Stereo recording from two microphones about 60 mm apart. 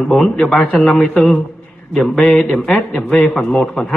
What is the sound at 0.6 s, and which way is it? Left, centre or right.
Speech, left.